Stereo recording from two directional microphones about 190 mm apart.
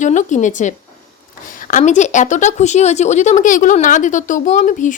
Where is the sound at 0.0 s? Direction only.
40° left (ahead or behind).